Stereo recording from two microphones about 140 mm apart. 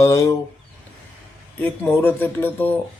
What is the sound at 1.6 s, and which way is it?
Speech, 15° left (ahead or behind).